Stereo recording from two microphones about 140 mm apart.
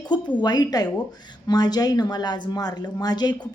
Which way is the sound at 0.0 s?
30° left (ahead or behind).